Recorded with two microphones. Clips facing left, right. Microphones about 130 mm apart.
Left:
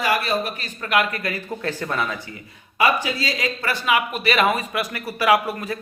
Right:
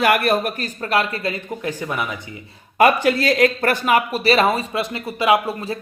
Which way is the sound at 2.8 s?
55° right (ahead or behind).